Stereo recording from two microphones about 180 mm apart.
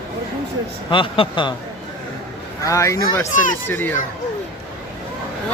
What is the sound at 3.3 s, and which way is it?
Speech, 45° left (ahead or behind).